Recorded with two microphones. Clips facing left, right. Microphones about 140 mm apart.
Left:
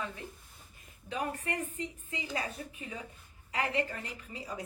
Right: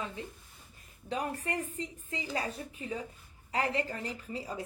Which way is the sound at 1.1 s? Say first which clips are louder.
Right 1 dB; 35° right (ahead or behind).